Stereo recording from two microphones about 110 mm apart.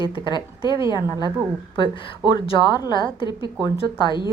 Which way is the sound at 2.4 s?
50° left (ahead or behind).